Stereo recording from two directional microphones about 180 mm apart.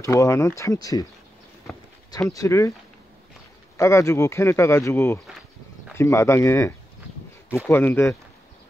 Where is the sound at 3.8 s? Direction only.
15° left (ahead or behind).